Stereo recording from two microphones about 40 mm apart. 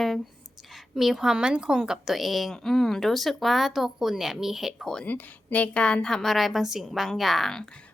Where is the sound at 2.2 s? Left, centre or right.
Centre.